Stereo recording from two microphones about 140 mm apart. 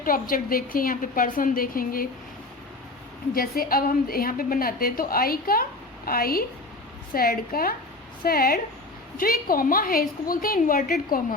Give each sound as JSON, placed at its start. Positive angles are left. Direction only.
{"t": 0.0, "sound": "a woman's voice", "side_deg": 90}
{"t": 3.3, "sound": "a woman's voice", "side_deg": 90}